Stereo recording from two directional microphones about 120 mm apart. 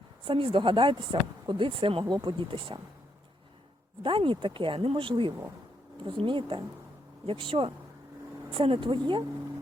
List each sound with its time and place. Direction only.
0.3 s speech: 45° right (ahead or behind)
2.0 s speech: 40° right (ahead or behind)
4.0 s speech: 45° right (ahead or behind)